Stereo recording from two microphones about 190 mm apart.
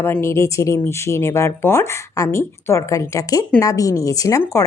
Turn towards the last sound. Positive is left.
turn(degrees=15)  # may be behind; listen again after turning